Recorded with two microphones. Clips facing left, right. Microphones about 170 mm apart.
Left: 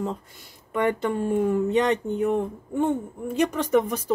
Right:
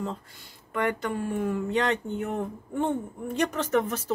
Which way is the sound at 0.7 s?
25° left (ahead or behind).